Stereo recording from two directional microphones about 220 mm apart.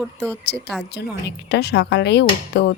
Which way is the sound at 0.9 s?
50° left (ahead or behind).